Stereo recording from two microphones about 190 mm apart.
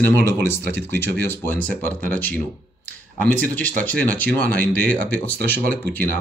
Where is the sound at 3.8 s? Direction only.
10° left (ahead or behind).